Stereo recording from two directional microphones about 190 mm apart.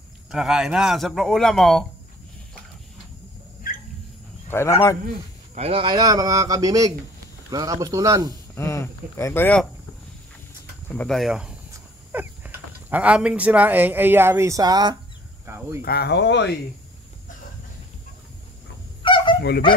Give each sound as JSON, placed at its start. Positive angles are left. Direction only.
{"t": 0.3, "sound": "a man's voice", "side_deg": 0}
{"t": 4.5, "sound": "speech", "side_deg": 15}
{"t": 5.5, "sound": "a man's voice", "side_deg": -30}
{"t": 8.5, "sound": "speech", "side_deg": 15}
{"t": 10.9, "sound": "a man's voice", "side_deg": 5}
{"t": 15.4, "sound": "cricket", "side_deg": -15}
{"t": 15.8, "sound": "speech", "side_deg": 55}
{"t": 19.0, "sound": "goose", "side_deg": 25}